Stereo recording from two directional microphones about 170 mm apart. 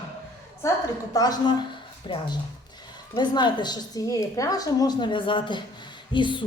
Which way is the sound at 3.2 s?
25° left (ahead or behind).